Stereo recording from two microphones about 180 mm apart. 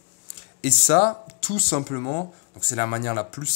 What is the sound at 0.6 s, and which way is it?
Speech, 50° left (ahead or behind).